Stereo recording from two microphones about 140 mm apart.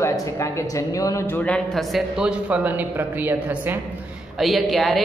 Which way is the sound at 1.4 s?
5° left (ahead or behind).